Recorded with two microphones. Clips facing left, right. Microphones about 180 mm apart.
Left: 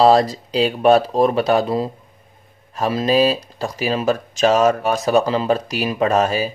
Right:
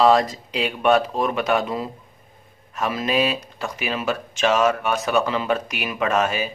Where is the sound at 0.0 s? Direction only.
35° left (ahead or behind).